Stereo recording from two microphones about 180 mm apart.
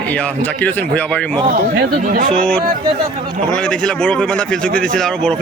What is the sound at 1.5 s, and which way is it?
Speech, 50° right (ahead or behind).